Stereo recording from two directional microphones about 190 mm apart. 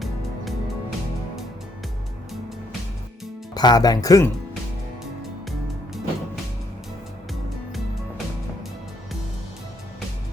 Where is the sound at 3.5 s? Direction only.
20° left (ahead or behind).